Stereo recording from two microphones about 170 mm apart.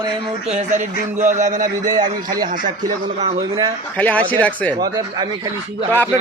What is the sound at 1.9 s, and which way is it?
Speech, 25° right (ahead or behind).